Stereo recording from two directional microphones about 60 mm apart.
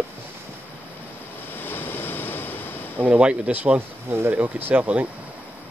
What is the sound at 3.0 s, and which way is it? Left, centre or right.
Speech, right.